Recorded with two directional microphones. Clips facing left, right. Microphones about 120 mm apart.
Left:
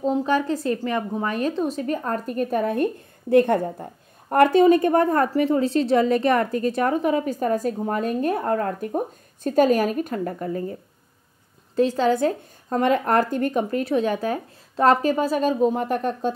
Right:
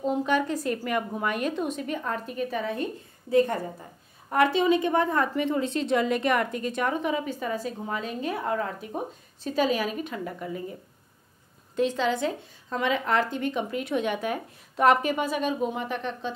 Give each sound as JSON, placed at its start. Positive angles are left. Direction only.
{"t": 0.0, "sound": "a woman's voice", "side_deg": 35}